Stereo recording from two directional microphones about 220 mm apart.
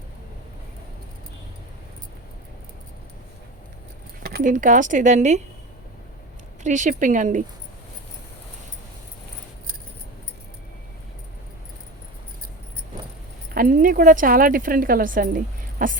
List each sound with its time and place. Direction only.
4.2 s speech: 45° right (ahead or behind)
6.6 s speech: 35° right (ahead or behind)
13.5 s speech: 40° right (ahead or behind)